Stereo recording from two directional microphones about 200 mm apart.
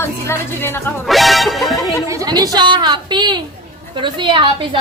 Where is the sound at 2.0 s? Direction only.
20° right (ahead or behind).